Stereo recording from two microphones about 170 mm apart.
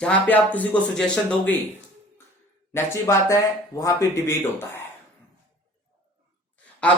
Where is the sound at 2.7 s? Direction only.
20° left (ahead or behind).